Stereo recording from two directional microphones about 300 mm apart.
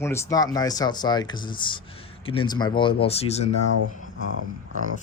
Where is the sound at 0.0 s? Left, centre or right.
Centre.